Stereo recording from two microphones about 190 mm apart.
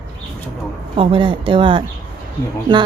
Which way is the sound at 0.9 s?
25° right (ahead or behind).